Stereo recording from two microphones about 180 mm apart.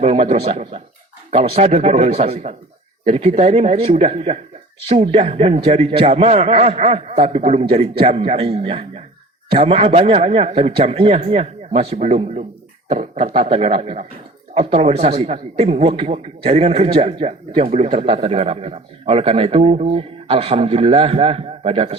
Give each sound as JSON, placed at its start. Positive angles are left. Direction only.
{"t": 0.0, "sound": "a man's voice", "side_deg": -35}